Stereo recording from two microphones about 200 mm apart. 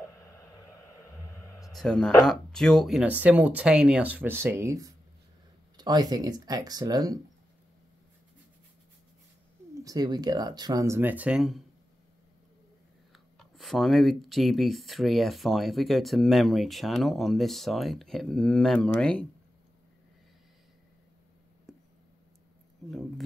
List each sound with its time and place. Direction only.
1.7 s speech: 5° left (ahead or behind); by 7.2 s 20° right (ahead or behind)
9.8 s speech: 20° right (ahead or behind); by 11.6 s centre (ahead or behind)
13.1 s speech: centre (ahead or behind)
22.8 s speech: centre (ahead or behind)